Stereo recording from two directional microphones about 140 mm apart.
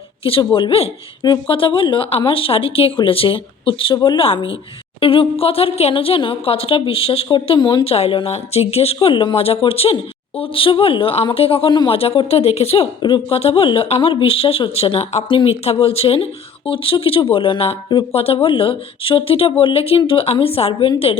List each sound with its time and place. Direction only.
0.3 s speech: 40° left (ahead or behind)
7.9 s a woman's voice: 45° left (ahead or behind)